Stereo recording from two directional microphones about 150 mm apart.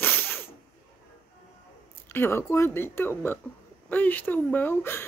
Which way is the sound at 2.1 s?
15° left (ahead or behind).